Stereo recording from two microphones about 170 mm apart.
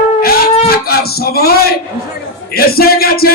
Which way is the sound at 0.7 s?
65° left (ahead or behind).